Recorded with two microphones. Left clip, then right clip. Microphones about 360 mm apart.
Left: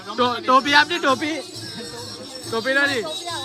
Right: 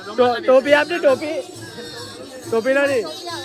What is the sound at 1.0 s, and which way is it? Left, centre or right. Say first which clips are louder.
Speech: right 3 dB; left.